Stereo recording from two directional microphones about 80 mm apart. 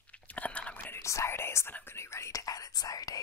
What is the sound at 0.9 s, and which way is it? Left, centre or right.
Speech, left.